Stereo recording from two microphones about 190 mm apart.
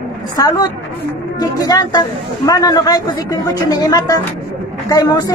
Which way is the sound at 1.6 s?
20° left (ahead or behind).